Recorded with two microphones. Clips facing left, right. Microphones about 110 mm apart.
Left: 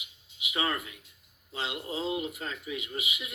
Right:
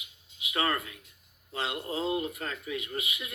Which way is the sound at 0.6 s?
10° left (ahead or behind).